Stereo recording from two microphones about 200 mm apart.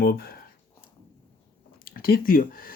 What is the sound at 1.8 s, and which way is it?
Speech, 50° left (ahead or behind).